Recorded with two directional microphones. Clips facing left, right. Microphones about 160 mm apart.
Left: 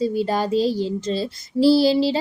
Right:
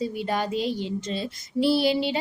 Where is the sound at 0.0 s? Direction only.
35° left (ahead or behind).